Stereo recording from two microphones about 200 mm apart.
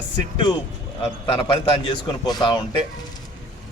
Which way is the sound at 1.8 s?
25° left (ahead or behind).